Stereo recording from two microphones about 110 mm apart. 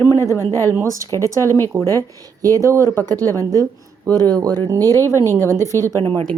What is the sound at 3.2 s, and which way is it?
Speech, 20° left (ahead or behind).